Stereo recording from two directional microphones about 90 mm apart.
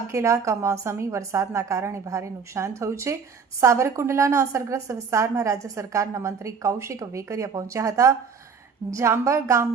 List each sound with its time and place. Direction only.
0.1 s a woman's voice: 35° right (ahead or behind)